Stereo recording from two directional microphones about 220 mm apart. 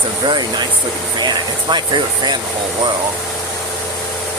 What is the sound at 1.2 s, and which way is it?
Speech, 20° right (ahead or behind).